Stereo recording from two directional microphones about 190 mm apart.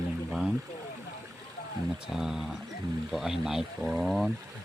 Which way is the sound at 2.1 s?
5° right (ahead or behind).